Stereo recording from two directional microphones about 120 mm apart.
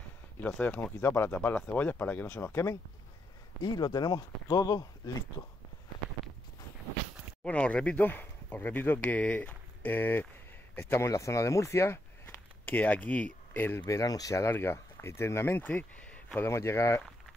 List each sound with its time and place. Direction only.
0.6 s speech: 15° left (ahead or behind)
3.6 s speech: 35° left (ahead or behind)
7.4 s speech: 10° left (ahead or behind)
16.4 s speech: 20° left (ahead or behind)